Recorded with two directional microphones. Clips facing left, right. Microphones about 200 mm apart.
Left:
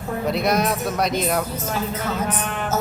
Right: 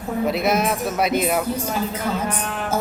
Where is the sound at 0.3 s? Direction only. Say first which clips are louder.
Even; 5° right (ahead or behind).